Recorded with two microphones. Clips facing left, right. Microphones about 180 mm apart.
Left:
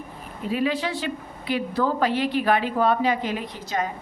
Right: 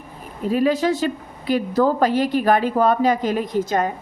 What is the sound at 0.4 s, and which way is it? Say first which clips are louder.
A woman's voice: right 6 dB; 45° right (ahead or behind).